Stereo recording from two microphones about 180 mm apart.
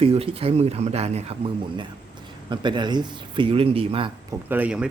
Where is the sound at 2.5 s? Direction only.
25° right (ahead or behind).